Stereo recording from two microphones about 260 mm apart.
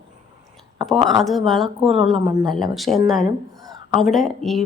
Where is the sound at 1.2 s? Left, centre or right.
Centre.